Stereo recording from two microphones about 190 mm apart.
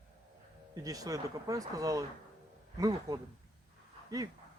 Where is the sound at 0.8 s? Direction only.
20° right (ahead or behind).